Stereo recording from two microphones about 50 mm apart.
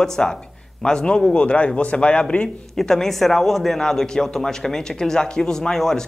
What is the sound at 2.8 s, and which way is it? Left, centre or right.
A man's voice, centre.